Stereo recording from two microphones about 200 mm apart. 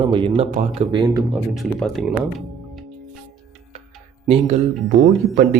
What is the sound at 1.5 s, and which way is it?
Speech, centre (ahead or behind).